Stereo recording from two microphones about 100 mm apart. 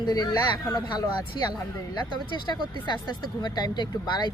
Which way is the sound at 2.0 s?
50° left (ahead or behind).